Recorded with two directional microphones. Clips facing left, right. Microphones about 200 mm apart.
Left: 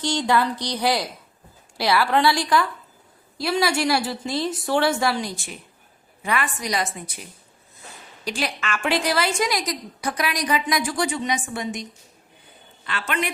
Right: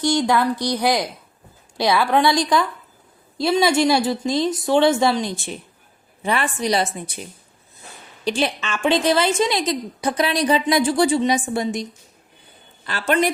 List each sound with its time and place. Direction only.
0.0 s a woman's voice: 10° right (ahead or behind); by 7.2 s 25° right (ahead or behind)
8.2 s a woman's voice: 25° right (ahead or behind)